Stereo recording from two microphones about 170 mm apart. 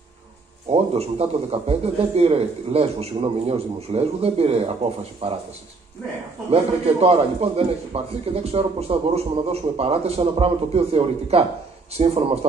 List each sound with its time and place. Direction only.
0.7 s a man's voice: 35° right (ahead or behind)
6.5 s a man's voice: 35° right (ahead or behind)